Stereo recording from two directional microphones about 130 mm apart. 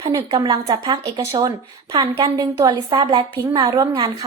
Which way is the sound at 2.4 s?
25° right (ahead or behind).